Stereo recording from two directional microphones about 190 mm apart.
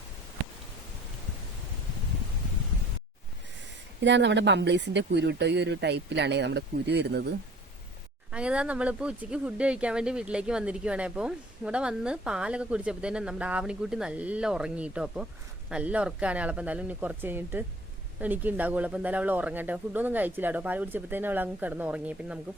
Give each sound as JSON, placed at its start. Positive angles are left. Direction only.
{"t": 4.0, "sound": "speech", "side_deg": -70}
{"t": 8.3, "sound": "speech", "side_deg": -5}